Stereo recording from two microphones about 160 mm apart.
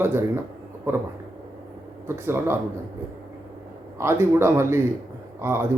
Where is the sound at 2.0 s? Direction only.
15° right (ahead or behind).